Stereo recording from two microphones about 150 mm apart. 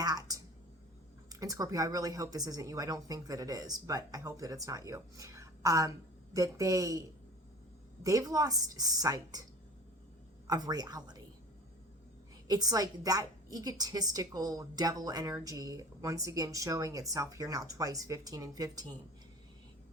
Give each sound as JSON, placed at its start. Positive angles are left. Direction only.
{"t": 0.0, "sound": "a sound", "side_deg": -25}
{"t": 1.3, "sound": "a woman's voice", "side_deg": -25}
{"t": 8.0, "sound": "a woman's voice", "side_deg": -20}
{"t": 10.4, "sound": "a woman's voice", "side_deg": -25}
{"t": 12.5, "sound": "a woman's voice", "side_deg": -25}